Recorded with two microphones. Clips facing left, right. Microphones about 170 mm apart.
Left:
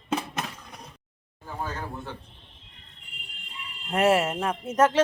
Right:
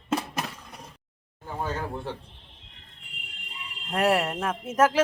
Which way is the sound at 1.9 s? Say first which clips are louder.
Right 4 dB; 30° right (ahead or behind).